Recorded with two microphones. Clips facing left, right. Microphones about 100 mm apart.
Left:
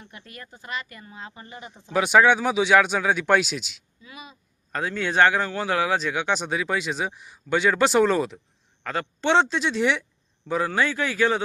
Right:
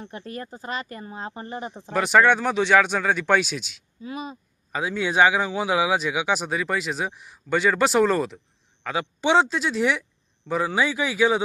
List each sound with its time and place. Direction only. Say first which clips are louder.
0.0 s speech: right 9 dB; 35° right (ahead or behind)
1.9 s a man's voice: even; centre (ahead or behind)
4.0 s speech: right 11 dB; 40° right (ahead or behind)
4.7 s a man's voice: right 1 dB; 5° right (ahead or behind)